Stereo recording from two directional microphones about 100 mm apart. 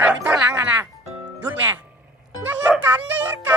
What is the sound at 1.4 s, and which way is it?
Music, 20° right (ahead or behind).